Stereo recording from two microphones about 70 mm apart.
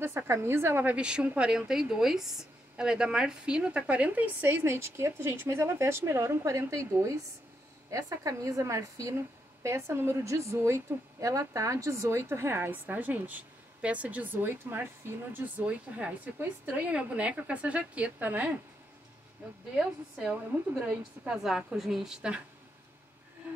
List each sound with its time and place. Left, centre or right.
0.0 s a woman's voice: right
0.9 s a woman's voice: centre; by 7.2 s right
8.2 s a woman's voice: right
19.7 s a woman's voice: centre